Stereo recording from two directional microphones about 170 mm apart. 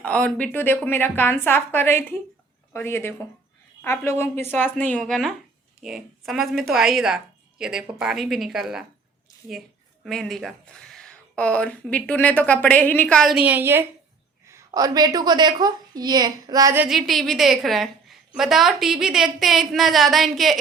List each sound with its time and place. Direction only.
0.0 s a woman's voice: 5° left (ahead or behind); by 16.7 s 20° right (ahead or behind)
16.7 s speech: 5° right (ahead or behind)